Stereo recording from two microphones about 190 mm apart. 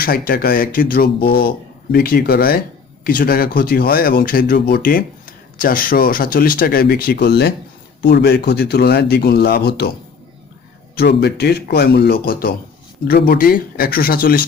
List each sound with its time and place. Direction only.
0.0 s speech: 50° left (ahead or behind)
11.0 s speech: 60° left (ahead or behind)